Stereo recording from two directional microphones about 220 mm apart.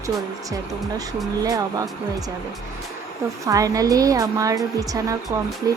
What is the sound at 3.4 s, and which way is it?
A woman's voice, 15° right (ahead or behind).